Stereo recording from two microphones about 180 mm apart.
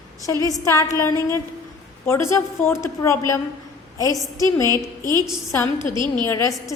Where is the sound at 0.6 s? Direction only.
15° left (ahead or behind).